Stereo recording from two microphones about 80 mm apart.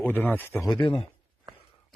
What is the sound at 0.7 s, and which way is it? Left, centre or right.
Speech, left.